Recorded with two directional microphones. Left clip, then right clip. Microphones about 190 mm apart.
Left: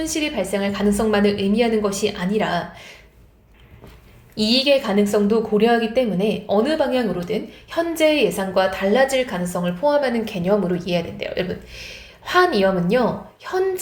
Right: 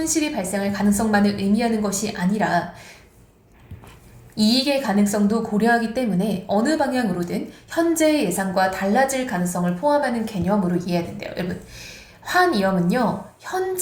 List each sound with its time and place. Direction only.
0.0 s a woman's voice: 30° left (ahead or behind)
4.4 s a woman's voice: 30° left (ahead or behind)